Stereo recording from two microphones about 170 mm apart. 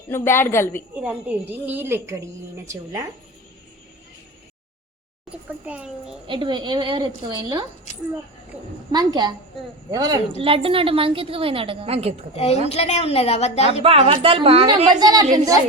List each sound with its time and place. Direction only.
0.1 s a man's voice: 15° left (ahead or behind)
0.9 s a woman's voice: 10° right (ahead or behind)
5.6 s a woman's voice: 5° right (ahead or behind)
6.2 s a woman's voice: 30° right (ahead or behind)
8.9 s a woman's voice: 25° right (ahead or behind)
12.6 s a woman's voice: 40° left (ahead or behind)
13.8 s a woman's voice: 35° right (ahead or behind)
14.9 s a woman's voice: 20° right (ahead or behind)